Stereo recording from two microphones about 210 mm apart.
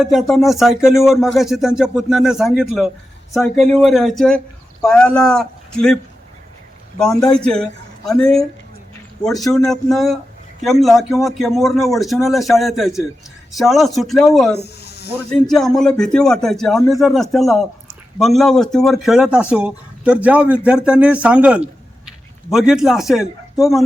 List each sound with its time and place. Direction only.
0.0 s a man's voice: centre (ahead or behind)
7.0 s speech: centre (ahead or behind)
14.8 s snake: 50° left (ahead or behind)
15.3 s speech: centre (ahead or behind)